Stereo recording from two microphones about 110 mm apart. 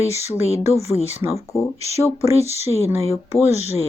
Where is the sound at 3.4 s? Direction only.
85° left.